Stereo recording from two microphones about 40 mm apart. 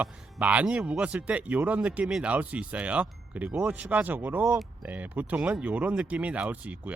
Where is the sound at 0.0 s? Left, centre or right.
Right.